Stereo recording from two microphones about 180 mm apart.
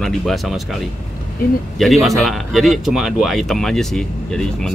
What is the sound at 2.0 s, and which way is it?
Speech, centre (ahead or behind).